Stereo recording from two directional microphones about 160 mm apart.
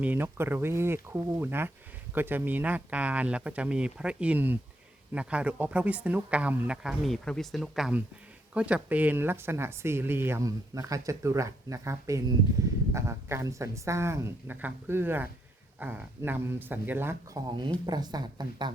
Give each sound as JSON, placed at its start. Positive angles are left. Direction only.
{"t": 0.0, "sound": "a woman's voice", "side_deg": -10}